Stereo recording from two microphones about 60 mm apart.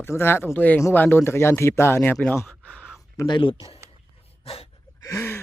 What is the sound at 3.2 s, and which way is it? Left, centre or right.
Speech, left.